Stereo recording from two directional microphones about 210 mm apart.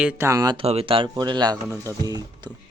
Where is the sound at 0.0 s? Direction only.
10° right (ahead or behind).